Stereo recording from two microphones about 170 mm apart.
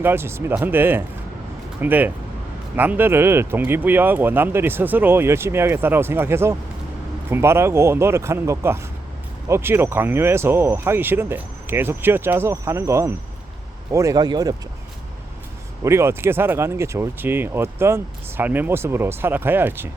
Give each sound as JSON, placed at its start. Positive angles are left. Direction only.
{"t": 0.0, "sound": "a man's voice", "side_deg": -15}
{"t": 15.8, "sound": "speech", "side_deg": -15}